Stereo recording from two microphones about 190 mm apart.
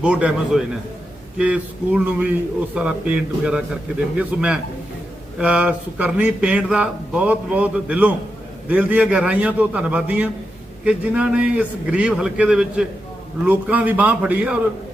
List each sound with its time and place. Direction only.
0.0 s a man's voice: 5° right (ahead or behind)